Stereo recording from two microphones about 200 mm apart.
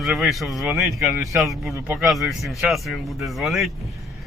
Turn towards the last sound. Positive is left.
turn(degrees=0)  # may be behind; listen again after turning